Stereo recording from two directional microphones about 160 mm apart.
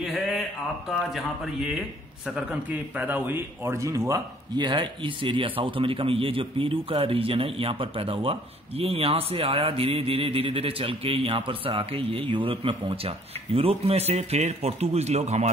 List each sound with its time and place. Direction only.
0.8 s a man's voice: centre (ahead or behind); by 15.5 s 45° right (ahead or behind)